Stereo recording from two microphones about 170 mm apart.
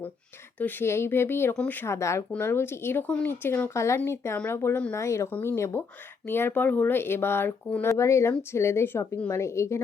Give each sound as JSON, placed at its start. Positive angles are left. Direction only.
{"t": 0.6, "sound": "speech", "side_deg": 10}